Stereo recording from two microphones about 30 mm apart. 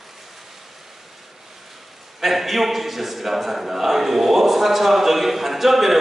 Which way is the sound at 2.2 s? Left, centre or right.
Centre.